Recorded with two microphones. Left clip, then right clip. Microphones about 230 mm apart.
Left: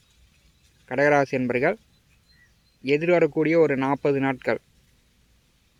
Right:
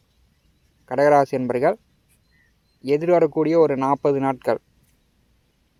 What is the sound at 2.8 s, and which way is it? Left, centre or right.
Speech, centre.